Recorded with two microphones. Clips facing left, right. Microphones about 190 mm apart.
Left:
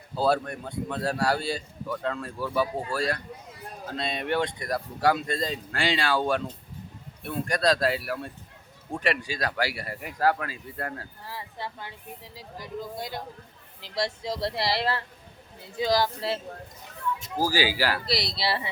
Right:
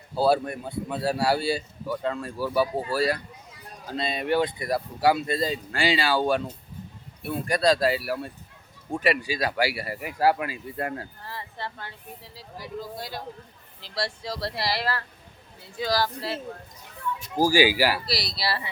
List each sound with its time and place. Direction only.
0.2 s speech: 5° right (ahead or behind)
11.2 s speech: 10° left (ahead or behind)
17.3 s speech: 15° right (ahead or behind)
18.0 s speech: 20° left (ahead or behind)